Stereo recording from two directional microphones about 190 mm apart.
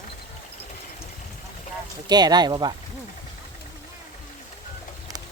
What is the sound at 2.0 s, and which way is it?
Speech, 20° right (ahead or behind).